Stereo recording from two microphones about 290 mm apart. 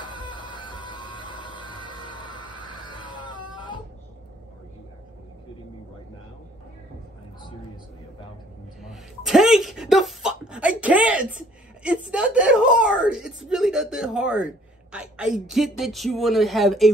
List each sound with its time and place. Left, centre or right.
0.0 s music: centre
8.8 s speech: centre